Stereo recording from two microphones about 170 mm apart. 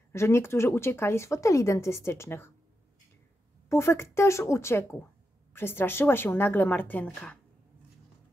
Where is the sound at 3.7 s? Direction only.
15° left (ahead or behind).